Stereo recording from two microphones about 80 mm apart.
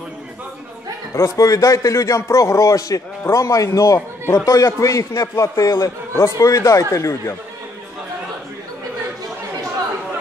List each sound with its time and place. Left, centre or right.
1.1 s a man's voice: left